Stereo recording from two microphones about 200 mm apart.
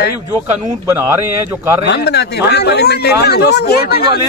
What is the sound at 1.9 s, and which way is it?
A man's voice, 60° left (ahead or behind).